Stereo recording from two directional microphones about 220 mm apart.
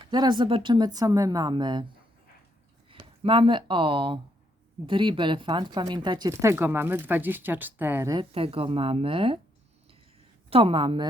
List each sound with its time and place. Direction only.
0.1 s speech: 20° right (ahead or behind)
2.9 s speech: 25° right (ahead or behind)
10.5 s speech: 25° right (ahead or behind)